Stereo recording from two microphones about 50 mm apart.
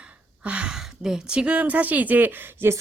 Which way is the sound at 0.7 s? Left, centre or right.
Centre.